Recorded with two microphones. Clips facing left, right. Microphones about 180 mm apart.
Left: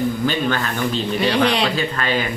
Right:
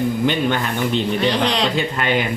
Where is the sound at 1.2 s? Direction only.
10° left (ahead or behind).